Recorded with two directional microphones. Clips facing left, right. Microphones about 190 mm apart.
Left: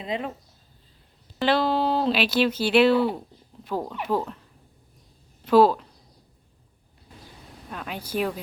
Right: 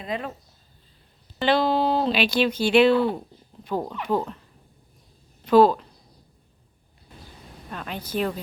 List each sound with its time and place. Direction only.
0.0 s speech: 20° left (ahead or behind)
1.4 s speech: centre (ahead or behind)
5.5 s speech: 5° left (ahead or behind)
7.7 s speech: 5° left (ahead or behind)